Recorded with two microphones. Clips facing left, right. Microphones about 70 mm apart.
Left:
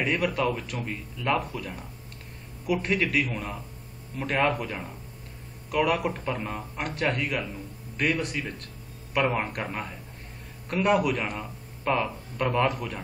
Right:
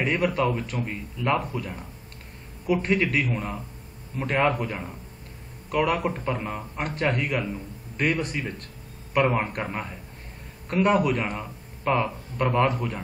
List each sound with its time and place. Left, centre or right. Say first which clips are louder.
0.0 s speech: right 2 dB; centre